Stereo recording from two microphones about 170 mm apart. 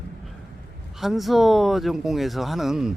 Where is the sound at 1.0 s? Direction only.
Centre (ahead or behind).